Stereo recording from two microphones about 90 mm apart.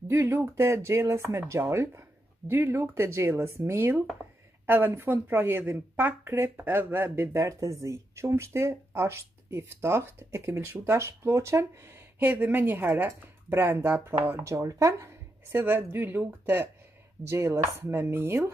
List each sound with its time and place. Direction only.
0.1 s a woman's voice: 30° right (ahead or behind)
14.4 s speech: 35° right (ahead or behind)
15.5 s a woman's voice: 25° right (ahead or behind)